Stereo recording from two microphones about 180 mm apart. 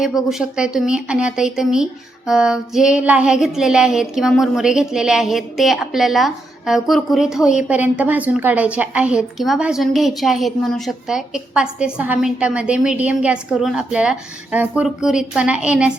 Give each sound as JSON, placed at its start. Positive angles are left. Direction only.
{"t": 0.0, "sound": "speech", "side_deg": 0}